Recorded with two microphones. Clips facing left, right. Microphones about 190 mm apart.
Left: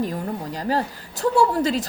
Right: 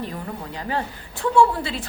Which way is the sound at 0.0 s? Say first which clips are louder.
Left 5 dB; 40° left (ahead or behind).